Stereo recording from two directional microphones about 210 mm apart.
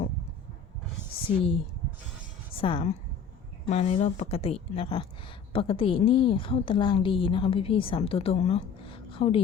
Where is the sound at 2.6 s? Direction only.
25° left (ahead or behind).